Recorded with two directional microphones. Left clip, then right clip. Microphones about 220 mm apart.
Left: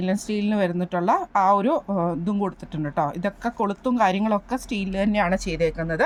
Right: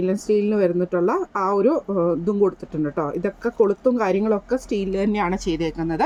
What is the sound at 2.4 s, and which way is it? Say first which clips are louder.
Speech: right 7 dB; 55° left (ahead or behind).